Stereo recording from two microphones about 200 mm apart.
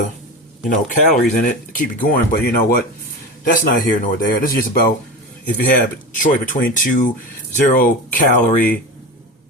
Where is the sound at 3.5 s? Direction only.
40° left (ahead or behind).